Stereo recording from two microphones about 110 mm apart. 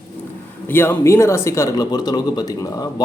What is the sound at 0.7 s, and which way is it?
A man's voice, 20° left (ahead or behind).